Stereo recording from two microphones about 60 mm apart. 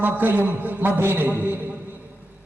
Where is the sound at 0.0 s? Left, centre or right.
Right.